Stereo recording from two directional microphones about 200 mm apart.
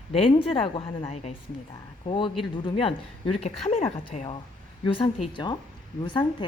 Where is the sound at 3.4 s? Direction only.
30° left (ahead or behind).